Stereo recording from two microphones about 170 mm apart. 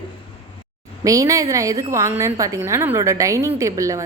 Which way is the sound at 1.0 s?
20° right (ahead or behind).